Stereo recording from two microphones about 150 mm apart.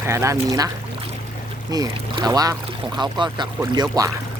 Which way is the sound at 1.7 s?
25° right (ahead or behind).